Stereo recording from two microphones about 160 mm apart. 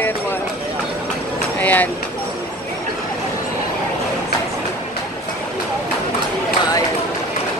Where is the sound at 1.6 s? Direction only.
10° left (ahead or behind).